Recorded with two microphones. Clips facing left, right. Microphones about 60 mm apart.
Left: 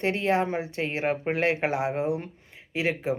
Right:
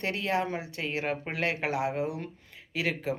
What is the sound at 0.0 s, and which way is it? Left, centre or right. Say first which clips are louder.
Speech: left 5 dB; left.